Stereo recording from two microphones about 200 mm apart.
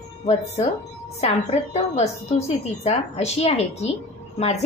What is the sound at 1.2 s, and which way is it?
A woman's voice, 35° left (ahead or behind).